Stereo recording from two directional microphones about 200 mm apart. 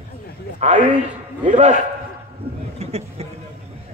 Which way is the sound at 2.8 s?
30° right (ahead or behind).